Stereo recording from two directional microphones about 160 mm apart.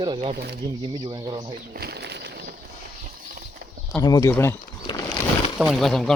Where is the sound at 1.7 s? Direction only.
80° right.